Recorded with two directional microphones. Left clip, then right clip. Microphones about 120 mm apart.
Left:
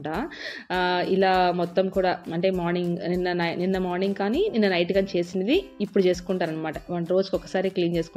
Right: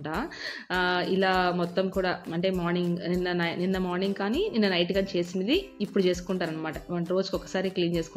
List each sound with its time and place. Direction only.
0.1 s speech: 40° left (ahead or behind)